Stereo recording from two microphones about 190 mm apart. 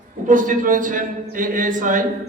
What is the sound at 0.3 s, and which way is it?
A man's voice, 45° right (ahead or behind).